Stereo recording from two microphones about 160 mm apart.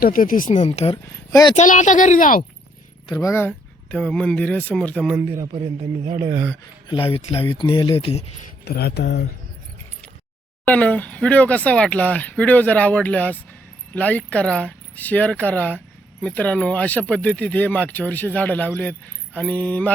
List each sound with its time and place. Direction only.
0.0 s speech: 60° left (ahead or behind); by 0.9 s 45° left (ahead or behind)
1.0 s speech: 20° left (ahead or behind)
1.5 s speech: 50° left (ahead or behind)
3.1 s speech: 20° left (ahead or behind)
5.1 s a man's voice: 15° right (ahead or behind)
5.5 s speech: 30° right (ahead or behind)
6.8 s speech: 35° left (ahead or behind)
8.6 s speech: 85° left
10.7 s speech: 10° left (ahead or behind)